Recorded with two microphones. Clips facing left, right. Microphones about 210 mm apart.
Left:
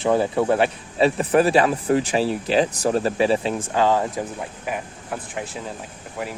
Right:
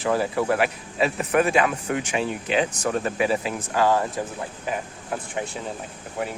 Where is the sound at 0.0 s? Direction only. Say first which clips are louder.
Left 4 dB; 25° left (ahead or behind).